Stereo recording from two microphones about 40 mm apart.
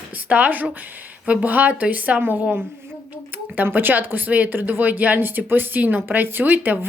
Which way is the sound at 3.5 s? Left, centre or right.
Right.